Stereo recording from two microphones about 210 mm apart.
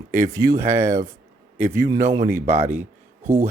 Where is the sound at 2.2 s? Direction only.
35° right (ahead or behind).